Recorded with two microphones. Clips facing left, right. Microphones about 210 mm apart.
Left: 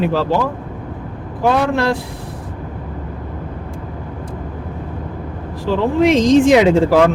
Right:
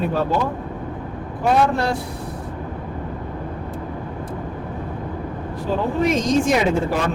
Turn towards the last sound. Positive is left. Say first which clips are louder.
# left 8 dB
turn(degrees=90)